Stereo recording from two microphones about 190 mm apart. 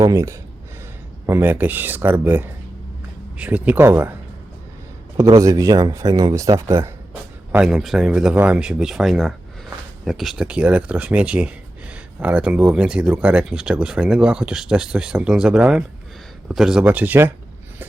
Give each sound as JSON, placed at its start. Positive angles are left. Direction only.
{"t": 0.0, "sound": "speech", "side_deg": -15}
{"t": 5.4, "sound": "speech", "side_deg": -15}